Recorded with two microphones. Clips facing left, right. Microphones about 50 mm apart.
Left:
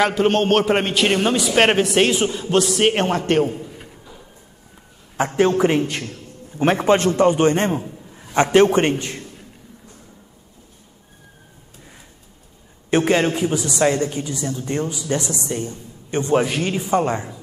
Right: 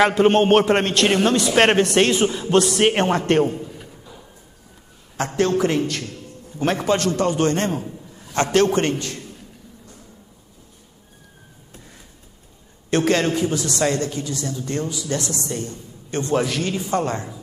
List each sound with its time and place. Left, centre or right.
0.0 s a man's voice: centre
0.7 s a man's voice: centre
5.1 s a man's voice: centre
12.9 s a man's voice: centre